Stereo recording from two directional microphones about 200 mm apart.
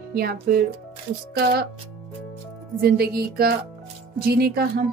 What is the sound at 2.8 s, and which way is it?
A woman's voice, 50° right (ahead or behind).